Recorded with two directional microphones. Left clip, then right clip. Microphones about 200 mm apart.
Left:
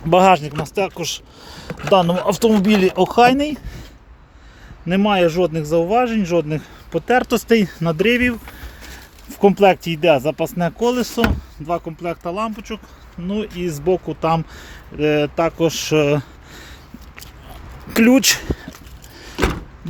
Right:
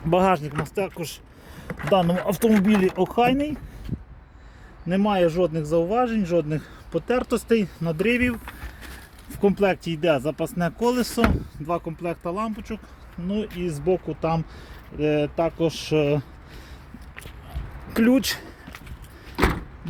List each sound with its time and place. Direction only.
0.1 s speech: 10° left (ahead or behind)
4.9 s speech: 25° left (ahead or behind)
7.3 s speech: 30° left (ahead or behind)
9.4 s speech: 25° left (ahead or behind)
11.6 s speech: centre (ahead or behind); by 16.2 s 20° left (ahead or behind)
17.8 s speech: 25° left (ahead or behind)